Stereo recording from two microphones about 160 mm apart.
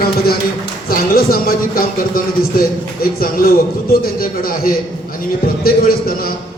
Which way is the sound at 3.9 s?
65° left (ahead or behind).